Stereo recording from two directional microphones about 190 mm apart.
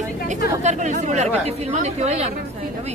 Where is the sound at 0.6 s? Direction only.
40° right (ahead or behind).